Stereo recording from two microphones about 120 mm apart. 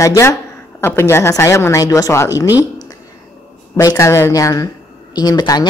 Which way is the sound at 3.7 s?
25° left (ahead or behind).